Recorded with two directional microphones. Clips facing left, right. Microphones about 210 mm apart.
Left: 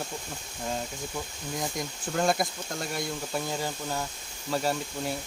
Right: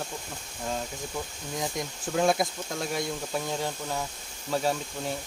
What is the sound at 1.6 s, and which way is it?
Speech, centre (ahead or behind).